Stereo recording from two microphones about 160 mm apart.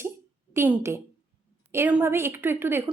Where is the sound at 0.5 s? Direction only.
15° right (ahead or behind).